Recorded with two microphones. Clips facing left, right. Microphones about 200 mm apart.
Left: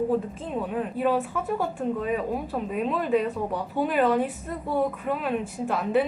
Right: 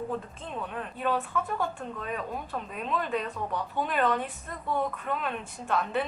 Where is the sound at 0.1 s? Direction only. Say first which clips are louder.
Left 8 dB; 10° left (ahead or behind).